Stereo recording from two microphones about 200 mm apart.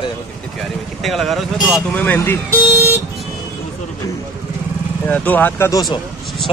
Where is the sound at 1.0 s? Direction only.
Centre (ahead or behind).